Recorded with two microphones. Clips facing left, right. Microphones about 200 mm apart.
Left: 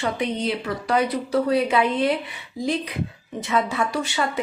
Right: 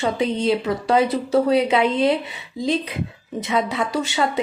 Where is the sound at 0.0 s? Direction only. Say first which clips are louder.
Right 4 dB; 25° right (ahead or behind).